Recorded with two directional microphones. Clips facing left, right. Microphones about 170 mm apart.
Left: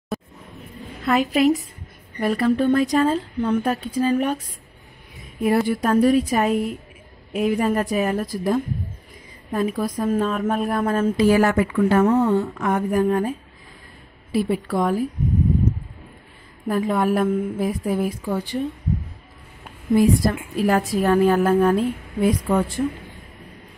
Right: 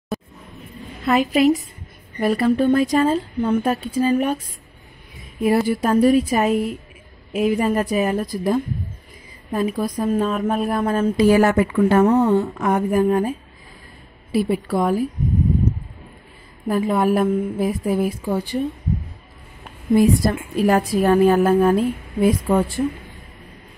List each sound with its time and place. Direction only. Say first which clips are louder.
0.1 s a sound: right 1 dB; centre (ahead or behind)
1.0 s speech: right 2 dB; 5° right (ahead or behind)
5.4 s speech: right 1 dB; 5° right (ahead or behind)
11.1 s a woman's voice: right 3 dB; 20° right (ahead or behind)
14.3 s speech: right 2 dB; 5° right (ahead or behind)
16.6 s speech: right 2 dB; 5° right (ahead or behind)
20.5 s a woman's voice: right 3 dB; 20° right (ahead or behind)